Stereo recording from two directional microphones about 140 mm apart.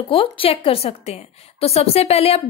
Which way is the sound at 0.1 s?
40° left (ahead or behind).